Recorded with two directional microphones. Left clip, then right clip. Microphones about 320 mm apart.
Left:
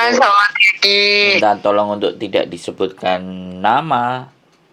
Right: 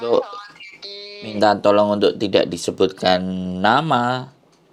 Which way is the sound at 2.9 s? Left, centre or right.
Right.